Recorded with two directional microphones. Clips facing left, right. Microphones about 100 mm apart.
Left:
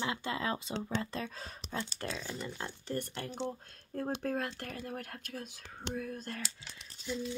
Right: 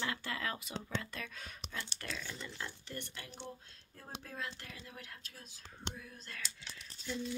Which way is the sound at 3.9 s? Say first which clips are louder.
Left 12 dB; 55° left (ahead or behind).